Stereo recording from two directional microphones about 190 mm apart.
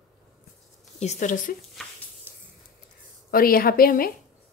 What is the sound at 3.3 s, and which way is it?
Speech, 50° left (ahead or behind).